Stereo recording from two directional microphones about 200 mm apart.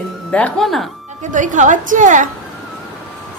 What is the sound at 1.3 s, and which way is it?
Speech, 40° right (ahead or behind).